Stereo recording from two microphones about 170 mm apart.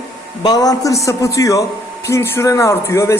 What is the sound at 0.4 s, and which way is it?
A man's voice, 20° left (ahead or behind).